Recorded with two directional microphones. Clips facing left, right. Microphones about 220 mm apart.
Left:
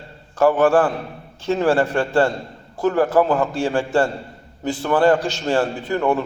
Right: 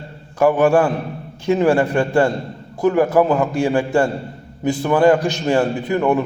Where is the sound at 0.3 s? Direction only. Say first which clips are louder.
Right 1 dB; 15° right (ahead or behind).